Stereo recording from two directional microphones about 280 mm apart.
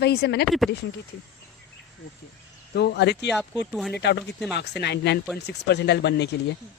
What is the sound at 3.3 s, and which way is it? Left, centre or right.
Speech, centre.